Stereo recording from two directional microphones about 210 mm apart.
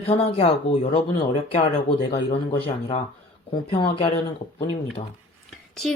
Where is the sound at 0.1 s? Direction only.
25° left (ahead or behind).